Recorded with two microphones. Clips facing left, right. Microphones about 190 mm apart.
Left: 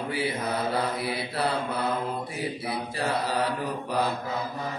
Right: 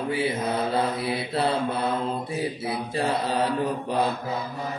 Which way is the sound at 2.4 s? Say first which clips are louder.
Right 3 dB; 25° right (ahead or behind).